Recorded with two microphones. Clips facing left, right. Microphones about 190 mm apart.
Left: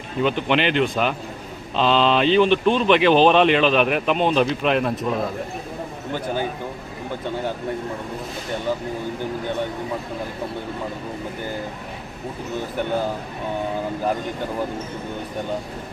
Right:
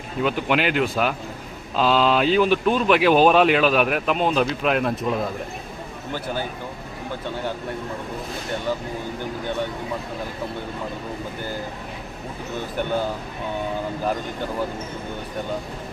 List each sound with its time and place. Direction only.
0.2 s speech: 5° right (ahead or behind)